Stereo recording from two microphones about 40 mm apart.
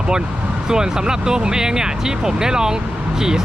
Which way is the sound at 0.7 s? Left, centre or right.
Centre.